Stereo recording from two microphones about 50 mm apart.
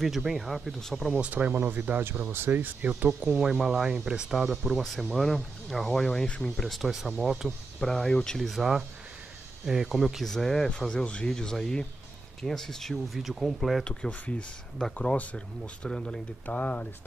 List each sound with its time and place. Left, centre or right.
0.0 s speech: centre
0.7 s speech: centre
1.2 s speech: right
1.5 s speech: right
3.3 s speech: centre
5.1 s speech: centre
6.5 s speech: centre
7.8 s speech: centre
8.4 s speech: centre
10.2 s speech: centre
12.9 s speech: centre
13.8 s speech: left
15.9 s speech: centre
16.4 s speech: left